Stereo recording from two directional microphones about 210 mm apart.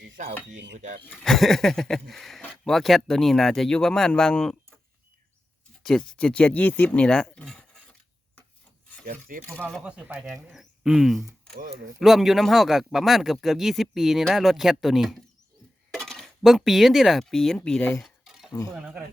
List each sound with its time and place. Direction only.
0.2 s speech: 35° right (ahead or behind)
1.1 s speech: centre (ahead or behind)
5.8 s speech: centre (ahead or behind)
9.0 s speech: 40° right (ahead or behind)
9.6 s speech: centre (ahead or behind)
11.5 s speech: 45° right (ahead or behind)
11.9 s speech: centre (ahead or behind)
18.0 s a sound: centre (ahead or behind)
18.7 s speech: 5° right (ahead or behind)